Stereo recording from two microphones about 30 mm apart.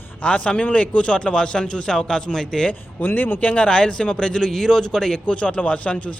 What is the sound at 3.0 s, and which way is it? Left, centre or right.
Speech, left.